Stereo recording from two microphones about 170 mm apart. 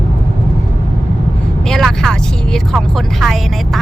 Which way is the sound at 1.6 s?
Centre (ahead or behind).